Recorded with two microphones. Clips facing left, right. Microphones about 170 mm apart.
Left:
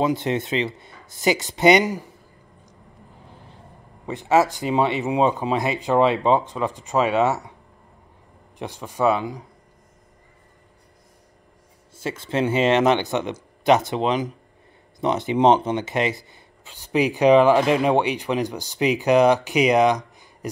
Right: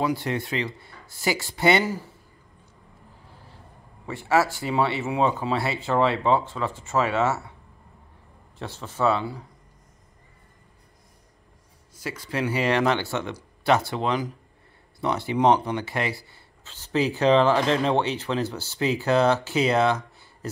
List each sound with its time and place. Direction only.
0.0 s speech: 20° left (ahead or behind)
4.0 s speech: 20° left (ahead or behind)
8.5 s speech: 15° left (ahead or behind)
11.9 s speech: 25° left (ahead or behind)